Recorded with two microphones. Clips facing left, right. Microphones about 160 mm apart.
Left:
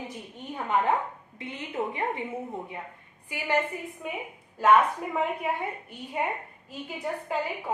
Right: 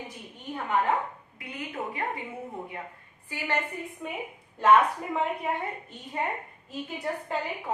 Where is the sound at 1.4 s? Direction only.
25° left (ahead or behind).